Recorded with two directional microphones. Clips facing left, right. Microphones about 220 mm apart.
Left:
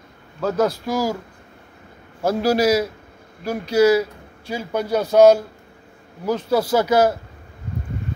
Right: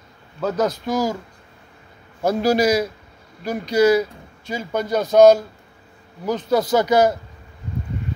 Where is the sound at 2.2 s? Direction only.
5° left (ahead or behind).